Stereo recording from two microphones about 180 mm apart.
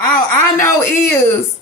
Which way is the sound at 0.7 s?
15° left (ahead or behind).